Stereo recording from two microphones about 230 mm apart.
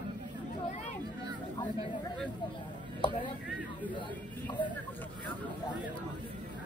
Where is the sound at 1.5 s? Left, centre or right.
Centre.